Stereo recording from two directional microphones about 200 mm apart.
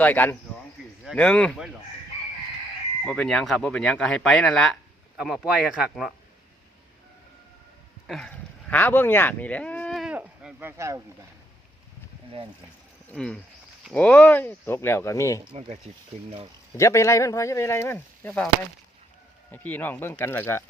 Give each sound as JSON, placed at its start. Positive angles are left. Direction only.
{"t": 0.0, "sound": "speech", "side_deg": 10}
{"t": 3.1, "sound": "speech", "side_deg": 5}
{"t": 8.0, "sound": "speech", "side_deg": 5}
{"t": 13.1, "sound": "speech", "side_deg": 5}
{"t": 15.5, "sound": "speech", "side_deg": -30}
{"t": 16.7, "sound": "speech", "side_deg": 15}